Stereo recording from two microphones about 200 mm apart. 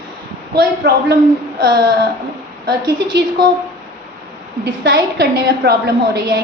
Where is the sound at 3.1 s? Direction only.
60° right (ahead or behind).